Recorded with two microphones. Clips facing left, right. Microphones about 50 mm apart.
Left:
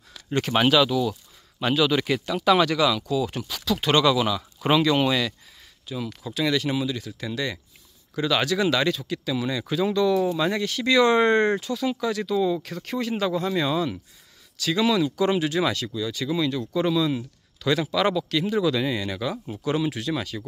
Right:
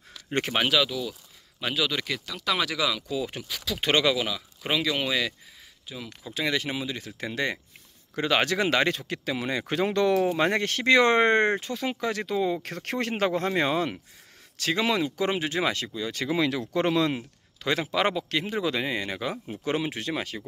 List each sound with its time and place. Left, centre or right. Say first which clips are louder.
0.6 s speech: left 6 dB; centre
2.0 s speech: left 7 dB; centre
2.5 s speech: left 6 dB; centre
3.1 s speech: left 5 dB; centre
3.4 s speech: left 6 dB; centre
3.8 s speech: left 3 dB; centre
4.6 s speech: left 7 dB; centre
6.3 s speech: left 4 dB; right
12.6 s speech: left 1 dB; right
16.3 s speech: even; right
16.7 s speech: left 1 dB; right
17.1 s speech: left 3 dB; right